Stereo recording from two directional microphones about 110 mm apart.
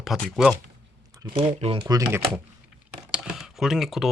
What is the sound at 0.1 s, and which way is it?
Speech, centre (ahead or behind).